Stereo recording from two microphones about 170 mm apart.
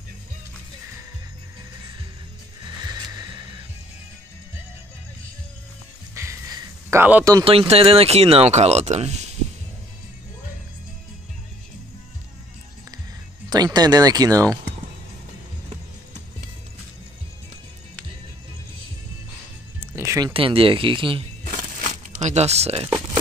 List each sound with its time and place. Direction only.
2.8 s music: 25° right (ahead or behind)
6.1 s a sound: 15° right (ahead or behind)
7.4 s speech: 35° right (ahead or behind)
13.5 s speech: 25° right (ahead or behind)
19.8 s music: 15° right (ahead or behind)
20.3 s speech: 30° right (ahead or behind)
21.5 s a sound: 45° right (ahead or behind)